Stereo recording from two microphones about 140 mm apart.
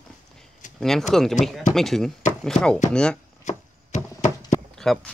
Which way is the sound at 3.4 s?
55° left (ahead or behind).